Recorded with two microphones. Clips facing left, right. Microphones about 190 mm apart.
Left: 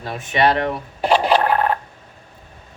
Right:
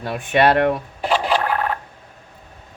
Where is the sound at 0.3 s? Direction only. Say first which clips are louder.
Right 2 dB; 55° right (ahead or behind).